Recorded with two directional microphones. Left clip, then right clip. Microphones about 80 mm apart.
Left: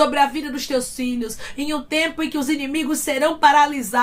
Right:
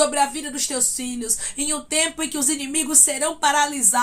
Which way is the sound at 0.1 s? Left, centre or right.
Centre.